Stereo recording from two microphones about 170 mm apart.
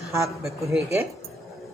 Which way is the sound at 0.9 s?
15° right (ahead or behind).